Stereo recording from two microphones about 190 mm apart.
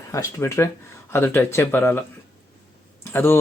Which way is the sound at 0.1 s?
15° left (ahead or behind).